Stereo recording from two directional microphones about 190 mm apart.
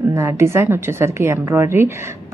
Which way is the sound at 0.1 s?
15° right (ahead or behind).